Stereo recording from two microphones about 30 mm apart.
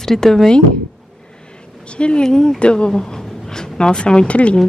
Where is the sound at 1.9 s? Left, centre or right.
Left.